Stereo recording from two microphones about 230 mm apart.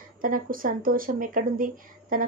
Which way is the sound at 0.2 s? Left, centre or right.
Right.